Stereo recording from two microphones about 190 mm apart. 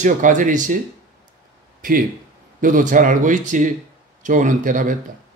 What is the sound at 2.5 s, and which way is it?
Speech, 45° right (ahead or behind).